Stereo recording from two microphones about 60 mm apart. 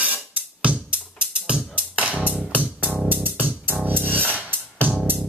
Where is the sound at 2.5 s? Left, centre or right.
Right.